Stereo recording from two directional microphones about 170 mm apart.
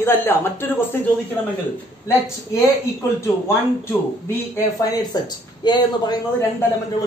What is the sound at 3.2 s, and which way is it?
Speech, 15° left (ahead or behind).